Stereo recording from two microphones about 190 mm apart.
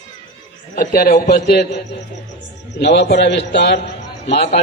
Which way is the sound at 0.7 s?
50° left (ahead or behind).